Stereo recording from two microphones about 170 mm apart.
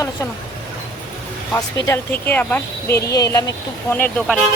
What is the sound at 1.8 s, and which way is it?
Speech, 15° left (ahead or behind).